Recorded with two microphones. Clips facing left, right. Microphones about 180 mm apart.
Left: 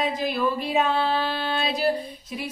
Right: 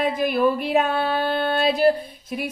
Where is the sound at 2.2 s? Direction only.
55° right (ahead or behind).